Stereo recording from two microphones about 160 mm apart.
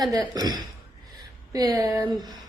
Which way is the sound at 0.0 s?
25° right (ahead or behind).